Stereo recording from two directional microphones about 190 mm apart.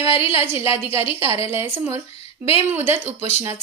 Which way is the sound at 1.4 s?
10° right (ahead or behind).